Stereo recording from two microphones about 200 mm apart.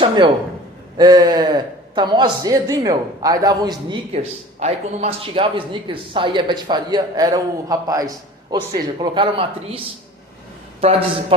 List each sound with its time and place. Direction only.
0.9 s a man's voice: 20° right (ahead or behind)
4.1 s a woman's voice: 30° right (ahead or behind)